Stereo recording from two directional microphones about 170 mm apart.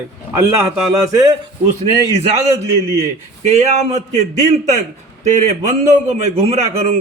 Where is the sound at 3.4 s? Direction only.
40° right (ahead or behind).